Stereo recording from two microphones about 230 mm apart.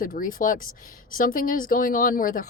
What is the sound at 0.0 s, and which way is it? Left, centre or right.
Speech, left.